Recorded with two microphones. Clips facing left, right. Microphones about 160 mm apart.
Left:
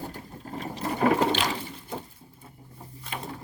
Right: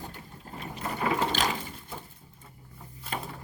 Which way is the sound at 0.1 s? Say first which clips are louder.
Left 6 dB; 35° left (ahead or behind).